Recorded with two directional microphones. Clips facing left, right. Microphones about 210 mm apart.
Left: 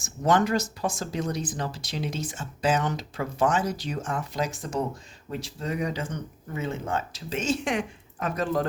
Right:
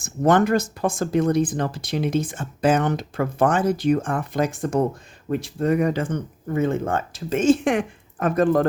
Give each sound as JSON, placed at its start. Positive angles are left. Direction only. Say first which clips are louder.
{"t": 0.0, "sound": "speech", "louder": "right 5 dB", "side_deg": -55}